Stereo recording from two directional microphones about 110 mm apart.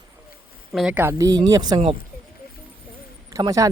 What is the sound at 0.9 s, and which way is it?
Speech, 20° right (ahead or behind).